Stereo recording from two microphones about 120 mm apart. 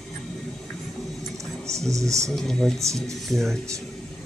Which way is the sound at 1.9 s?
25° right (ahead or behind).